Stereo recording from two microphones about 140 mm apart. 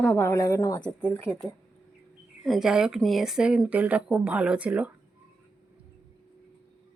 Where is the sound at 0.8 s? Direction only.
10° left (ahead or behind).